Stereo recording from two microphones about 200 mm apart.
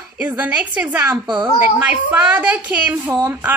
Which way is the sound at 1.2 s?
20° right (ahead or behind).